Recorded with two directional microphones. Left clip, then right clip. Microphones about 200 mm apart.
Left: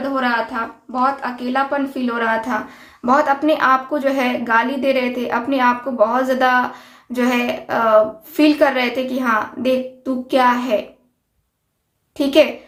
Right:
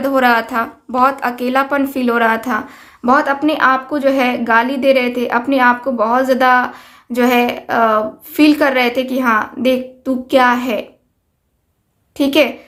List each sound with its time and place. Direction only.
0.0 s a woman's voice: 45° right (ahead or behind); by 10.8 s 30° right (ahead or behind)
12.1 s a woman's voice: 30° right (ahead or behind)